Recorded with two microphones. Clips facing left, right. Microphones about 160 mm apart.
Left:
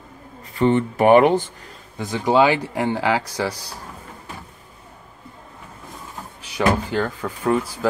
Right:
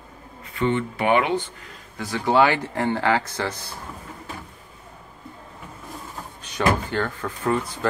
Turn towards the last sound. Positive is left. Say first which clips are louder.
# left 3 dB
turn(degrees=10)  # may be behind; listen again after turning